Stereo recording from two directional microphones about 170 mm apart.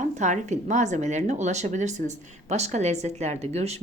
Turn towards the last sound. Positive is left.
turn(degrees=-40)  # may be behind; listen again after turning